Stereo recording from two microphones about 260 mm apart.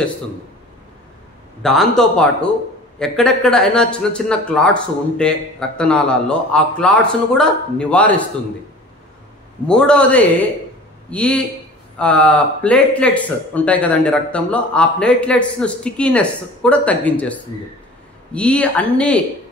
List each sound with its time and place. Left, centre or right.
1.6 s a man's voice: centre
9.7 s a man's voice: centre